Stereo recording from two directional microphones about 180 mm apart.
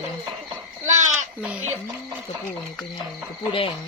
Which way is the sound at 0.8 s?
40° right (ahead or behind).